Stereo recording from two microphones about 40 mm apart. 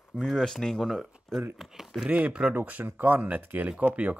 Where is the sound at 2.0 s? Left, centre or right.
Right.